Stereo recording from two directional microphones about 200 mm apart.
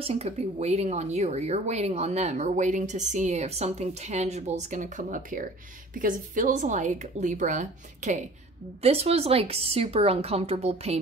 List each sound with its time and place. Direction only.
0.0 s a woman's voice: 30° right (ahead or behind)